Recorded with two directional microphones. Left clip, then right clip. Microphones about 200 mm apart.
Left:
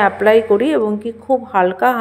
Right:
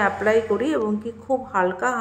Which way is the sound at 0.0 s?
25° left (ahead or behind).